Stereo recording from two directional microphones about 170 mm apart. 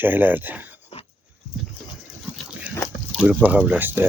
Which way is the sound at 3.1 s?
5° right (ahead or behind).